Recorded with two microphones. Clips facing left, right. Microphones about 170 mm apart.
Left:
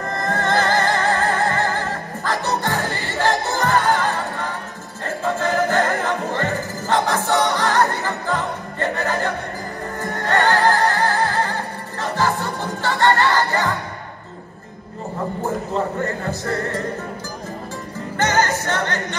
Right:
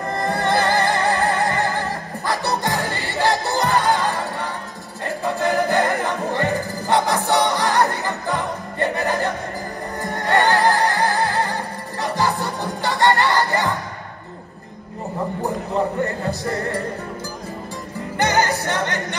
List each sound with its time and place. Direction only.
0.1 s music: 15° right (ahead or behind)
12.8 s music: 15° right (ahead or behind)
15.4 s a man's voice: 15° right (ahead or behind)
18.1 s music: 15° right (ahead or behind)